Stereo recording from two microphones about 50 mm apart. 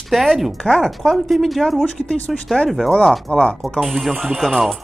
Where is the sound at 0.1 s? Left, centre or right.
Centre.